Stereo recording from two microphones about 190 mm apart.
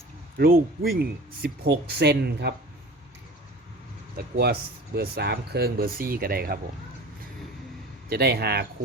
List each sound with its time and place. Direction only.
0.3 s speech: 50° right (ahead or behind)
4.2 s speech: 55° right (ahead or behind)
8.1 s speech: 55° right (ahead or behind)